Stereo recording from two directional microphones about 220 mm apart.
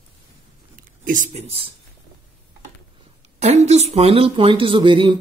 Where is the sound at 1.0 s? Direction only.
35° right (ahead or behind).